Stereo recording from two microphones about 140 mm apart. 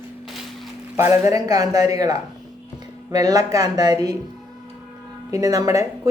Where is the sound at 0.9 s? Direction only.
20° right (ahead or behind).